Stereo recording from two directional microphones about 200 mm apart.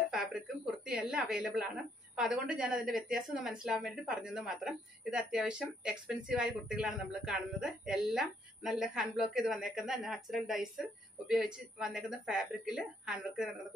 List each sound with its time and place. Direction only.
0.1 s speech: 5° right (ahead or behind)